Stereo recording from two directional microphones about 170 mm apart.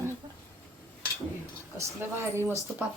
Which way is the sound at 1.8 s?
15° right (ahead or behind).